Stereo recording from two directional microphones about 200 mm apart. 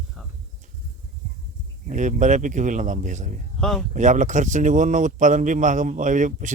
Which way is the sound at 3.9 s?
40° right (ahead or behind).